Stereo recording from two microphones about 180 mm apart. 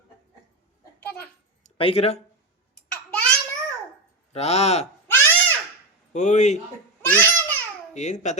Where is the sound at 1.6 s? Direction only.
35° left (ahead or behind).